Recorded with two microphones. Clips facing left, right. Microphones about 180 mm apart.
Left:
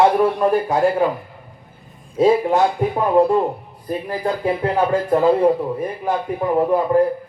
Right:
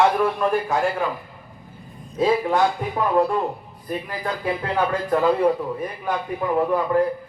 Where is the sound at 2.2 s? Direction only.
25° left (ahead or behind).